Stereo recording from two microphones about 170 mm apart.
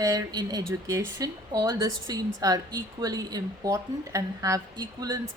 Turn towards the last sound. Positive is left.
turn(degrees=-25)  # may be behind; listen again after turning